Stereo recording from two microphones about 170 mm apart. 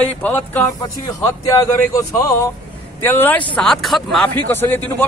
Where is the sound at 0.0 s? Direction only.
10° left (ahead or behind).